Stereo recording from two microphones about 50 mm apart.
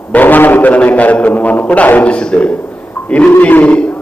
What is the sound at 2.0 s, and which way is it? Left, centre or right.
Speech, centre.